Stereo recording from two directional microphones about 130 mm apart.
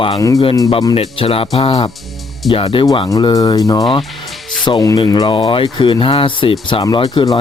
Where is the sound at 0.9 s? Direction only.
45° left (ahead or behind).